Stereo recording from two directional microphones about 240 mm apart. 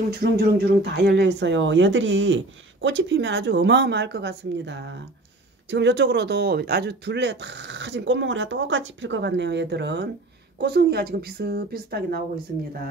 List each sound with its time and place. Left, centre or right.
0.2 s a woman's voice: right